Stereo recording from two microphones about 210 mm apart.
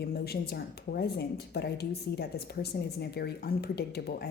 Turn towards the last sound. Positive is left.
turn(degrees=50)  # may be behind; listen again after turning